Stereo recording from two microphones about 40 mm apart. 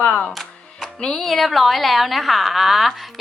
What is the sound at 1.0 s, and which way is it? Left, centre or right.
Music, centre.